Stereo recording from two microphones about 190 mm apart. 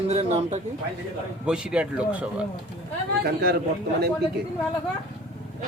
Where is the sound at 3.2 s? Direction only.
55° right (ahead or behind).